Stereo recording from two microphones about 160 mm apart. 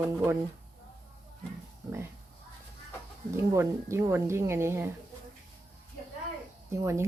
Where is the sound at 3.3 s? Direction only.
15° right (ahead or behind).